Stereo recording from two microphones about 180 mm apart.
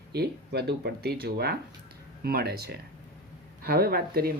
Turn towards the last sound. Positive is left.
turn(degrees=-60)  # may be behind; listen again after turning